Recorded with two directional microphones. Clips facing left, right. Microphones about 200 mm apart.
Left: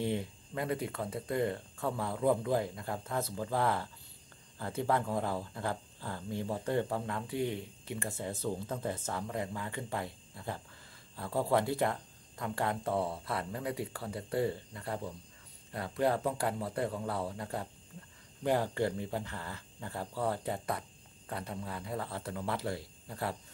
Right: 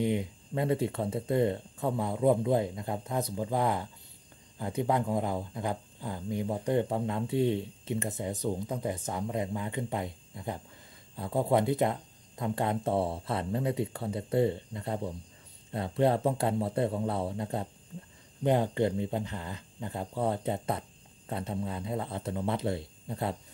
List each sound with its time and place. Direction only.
0.0 s speech: 15° right (ahead or behind)